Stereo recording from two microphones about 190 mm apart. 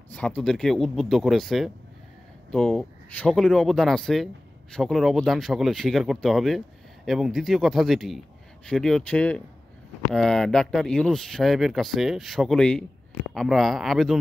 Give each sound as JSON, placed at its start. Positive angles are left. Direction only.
{"t": 0.1, "sound": "speech", "side_deg": 5}